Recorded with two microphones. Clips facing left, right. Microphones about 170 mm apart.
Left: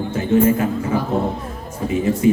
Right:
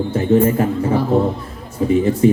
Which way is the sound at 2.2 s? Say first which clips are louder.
Right 2 dB; 35° right (ahead or behind).